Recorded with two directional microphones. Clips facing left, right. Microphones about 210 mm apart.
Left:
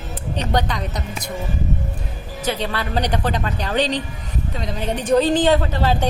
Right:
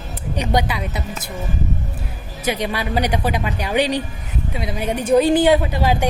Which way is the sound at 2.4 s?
10° right (ahead or behind).